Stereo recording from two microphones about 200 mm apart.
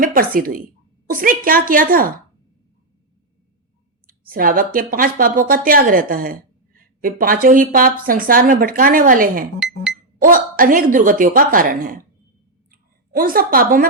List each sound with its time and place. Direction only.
0.0 s a sound: 45° right (ahead or behind)
0.3 s a woman's voice: 45° right (ahead or behind)
4.0 s a woman's voice: 45° right (ahead or behind)